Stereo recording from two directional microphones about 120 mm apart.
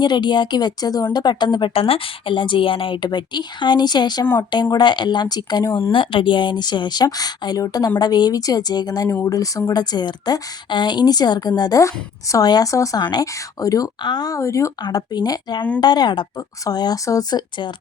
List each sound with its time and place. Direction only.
0.0 s speech: 40° left (ahead or behind)
1.7 s a woman's voice: 50° left (ahead or behind); by 5.9 s 30° left (ahead or behind)
5.9 s speech: 45° left (ahead or behind)